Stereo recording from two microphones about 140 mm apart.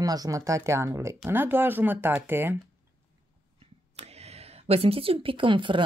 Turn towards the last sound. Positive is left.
turn(degrees=-35)  # may be behind; listen again after turning